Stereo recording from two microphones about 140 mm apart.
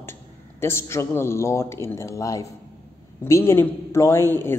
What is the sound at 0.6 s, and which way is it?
A man's voice, 20° left (ahead or behind).